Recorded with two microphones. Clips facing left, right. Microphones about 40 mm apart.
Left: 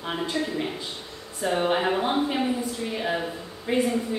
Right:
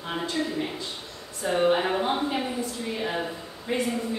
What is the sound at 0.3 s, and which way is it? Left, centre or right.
A woman's voice, centre.